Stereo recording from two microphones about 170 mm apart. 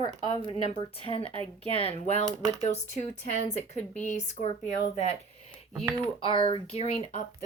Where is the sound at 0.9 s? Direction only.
35° left (ahead or behind).